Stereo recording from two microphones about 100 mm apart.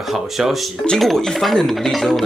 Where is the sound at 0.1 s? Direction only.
5° right (ahead or behind).